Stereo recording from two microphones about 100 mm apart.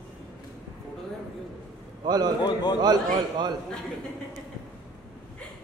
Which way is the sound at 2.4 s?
45° left (ahead or behind).